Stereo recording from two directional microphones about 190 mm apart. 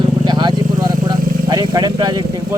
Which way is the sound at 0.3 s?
20° right (ahead or behind).